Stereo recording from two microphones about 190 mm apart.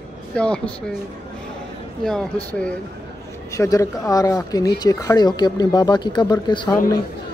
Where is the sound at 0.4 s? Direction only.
5° left (ahead or behind).